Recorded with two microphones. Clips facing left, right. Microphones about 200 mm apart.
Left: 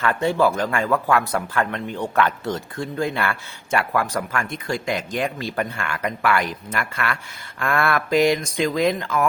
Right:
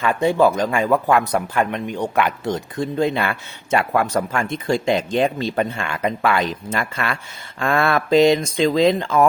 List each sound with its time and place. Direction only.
0.0 s speech: 15° right (ahead or behind)